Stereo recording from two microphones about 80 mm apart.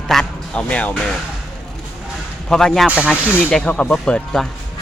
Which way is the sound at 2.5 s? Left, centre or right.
Centre.